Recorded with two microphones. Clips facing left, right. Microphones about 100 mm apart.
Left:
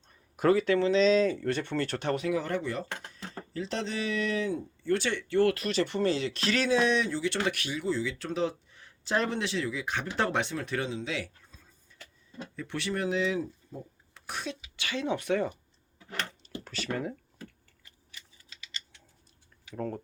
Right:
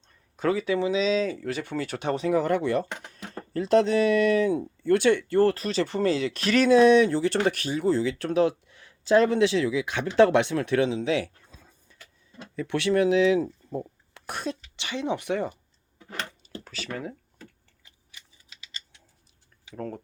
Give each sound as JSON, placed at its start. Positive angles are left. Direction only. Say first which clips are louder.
{"t": 0.1, "sound": "speech", "louder": "left 2 dB", "side_deg": 5}
{"t": 2.3, "sound": "speech", "louder": "right 7 dB", "side_deg": -50}
{"t": 2.6, "sound": "speech", "louder": "right 8 dB", "side_deg": -65}
{"t": 3.1, "sound": "speech", "louder": "right 4 dB", "side_deg": -55}
{"t": 5.4, "sound": "speech", "louder": "right 3 dB", "side_deg": -35}
{"t": 7.4, "sound": "speech", "louder": "right 6 dB", "side_deg": -35}
{"t": 9.5, "sound": "speech", "louder": "right 7 dB", "side_deg": -90}
{"t": 12.5, "sound": "speech", "louder": "right 10 dB", "side_deg": -90}
{"t": 13.7, "sound": "a sound", "louder": "right 10 dB", "side_deg": -90}
{"t": 14.3, "sound": "speech", "louder": "right 5 dB", "side_deg": -50}
{"t": 14.8, "sound": "speech", "louder": "right 1 dB", "side_deg": -20}
{"t": 16.4, "sound": "speech", "louder": "even", "side_deg": 0}
{"t": 19.7, "sound": "speech", "louder": "even", "side_deg": 0}